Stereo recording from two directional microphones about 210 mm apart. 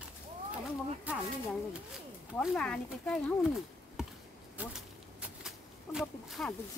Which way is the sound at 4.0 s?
5° right (ahead or behind).